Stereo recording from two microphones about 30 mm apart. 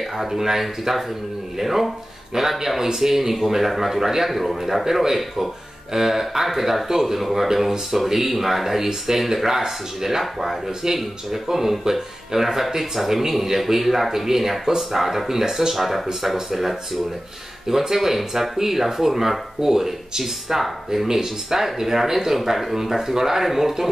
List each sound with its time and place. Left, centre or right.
0.3 s a man's voice: centre
7.2 s a man's voice: centre
15.7 s a man's voice: centre